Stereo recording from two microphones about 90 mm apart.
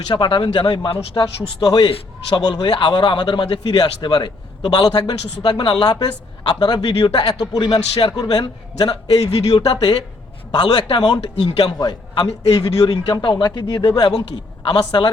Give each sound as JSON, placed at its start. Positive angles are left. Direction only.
{"t": 0.1, "sound": "a man's voice", "side_deg": 60}
{"t": 8.1, "sound": "a man's voice", "side_deg": 50}